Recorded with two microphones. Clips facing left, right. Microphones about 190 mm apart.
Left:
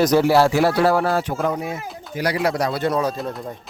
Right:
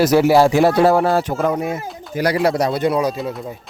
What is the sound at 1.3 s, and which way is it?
Speech, 55° right (ahead or behind).